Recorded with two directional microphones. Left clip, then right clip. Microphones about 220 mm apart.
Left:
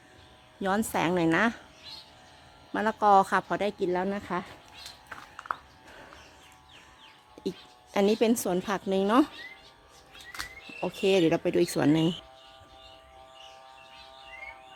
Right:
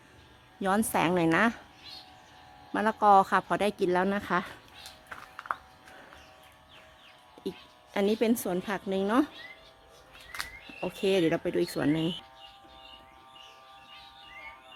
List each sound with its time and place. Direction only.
0.6 s a woman's voice: 5° right (ahead or behind)
2.7 s a woman's voice: 5° right (ahead or behind)
5.0 s a sound: 5° left (ahead or behind)
7.4 s music: 20° left (ahead or behind)
7.9 s a woman's voice: 15° left (ahead or behind)
10.8 s a woman's voice: 10° left (ahead or behind)